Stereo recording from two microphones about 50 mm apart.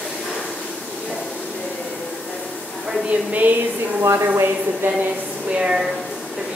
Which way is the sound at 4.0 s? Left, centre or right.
Right.